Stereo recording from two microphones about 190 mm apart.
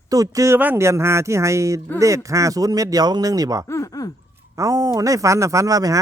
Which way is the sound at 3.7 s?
15° left (ahead or behind).